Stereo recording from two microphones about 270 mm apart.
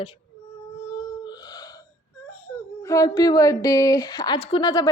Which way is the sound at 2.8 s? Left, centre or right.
Centre.